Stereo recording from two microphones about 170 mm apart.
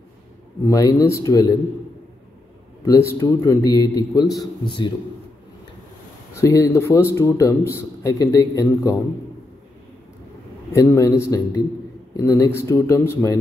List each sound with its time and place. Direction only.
0.7 s a man's voice: 20° left (ahead or behind)
2.8 s a man's voice: 15° left (ahead or behind)
6.3 s a man's voice: 15° left (ahead or behind)
10.7 s a man's voice: 15° left (ahead or behind)